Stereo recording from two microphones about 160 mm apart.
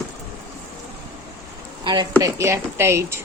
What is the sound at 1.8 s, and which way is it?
Speech, 30° right (ahead or behind).